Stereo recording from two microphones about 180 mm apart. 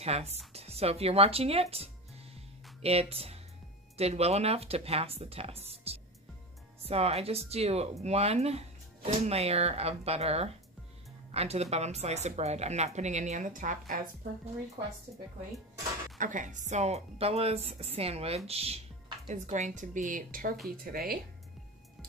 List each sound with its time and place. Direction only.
0.0 s a woman's voice: 35° right (ahead or behind)
16.2 s a woman's voice: 45° right (ahead or behind)